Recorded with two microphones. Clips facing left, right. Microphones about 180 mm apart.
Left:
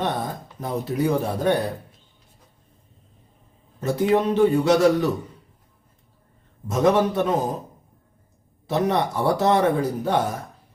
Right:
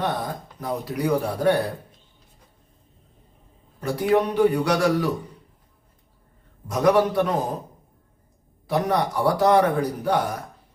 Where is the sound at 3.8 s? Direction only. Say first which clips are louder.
Left 1 dB; 25° left (ahead or behind).